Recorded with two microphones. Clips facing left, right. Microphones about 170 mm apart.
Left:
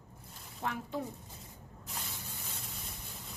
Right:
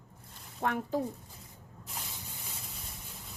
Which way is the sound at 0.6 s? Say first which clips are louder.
Right 5 dB; 55° right (ahead or behind).